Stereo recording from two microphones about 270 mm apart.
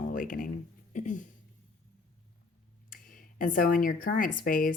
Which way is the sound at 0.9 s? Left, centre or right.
Left.